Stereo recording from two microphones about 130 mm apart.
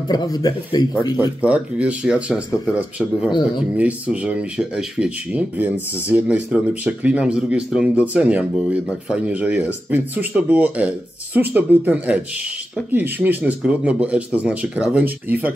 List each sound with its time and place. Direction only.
0.1 s speech: 30° left (ahead or behind)
1.4 s speech: 10° right (ahead or behind)
3.3 s speech: 35° left (ahead or behind)
3.7 s speech: 10° right (ahead or behind)